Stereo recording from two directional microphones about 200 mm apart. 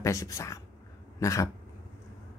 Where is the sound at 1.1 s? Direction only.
15° left (ahead or behind).